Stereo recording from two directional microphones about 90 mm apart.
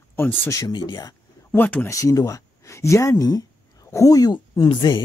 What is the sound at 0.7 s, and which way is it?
Speech, 55° left (ahead or behind).